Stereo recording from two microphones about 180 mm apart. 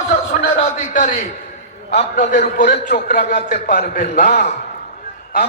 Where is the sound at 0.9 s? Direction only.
50° left (ahead or behind).